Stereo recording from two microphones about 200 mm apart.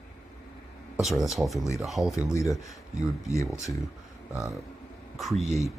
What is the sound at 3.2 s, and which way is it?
Speech, 15° left (ahead or behind).